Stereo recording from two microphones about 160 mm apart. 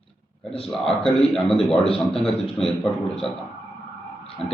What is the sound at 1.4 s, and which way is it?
A man's voice, 5° left (ahead or behind).